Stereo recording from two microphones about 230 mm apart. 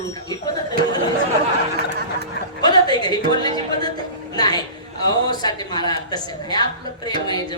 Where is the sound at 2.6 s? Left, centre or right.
Centre.